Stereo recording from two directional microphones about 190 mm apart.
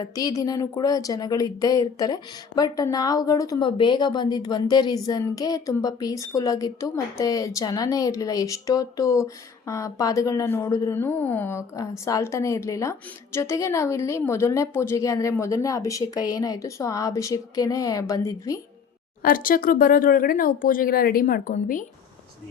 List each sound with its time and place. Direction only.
0.0 s speech: 20° left (ahead or behind)
19.2 s speech: 50° left (ahead or behind)